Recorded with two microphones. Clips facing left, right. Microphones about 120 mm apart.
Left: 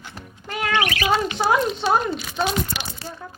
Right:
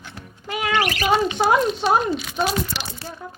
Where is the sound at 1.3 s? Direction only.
20° right (ahead or behind).